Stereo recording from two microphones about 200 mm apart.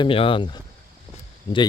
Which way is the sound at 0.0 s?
25° left (ahead or behind).